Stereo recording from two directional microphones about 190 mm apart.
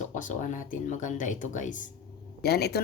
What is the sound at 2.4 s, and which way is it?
Speech, 55° left (ahead or behind).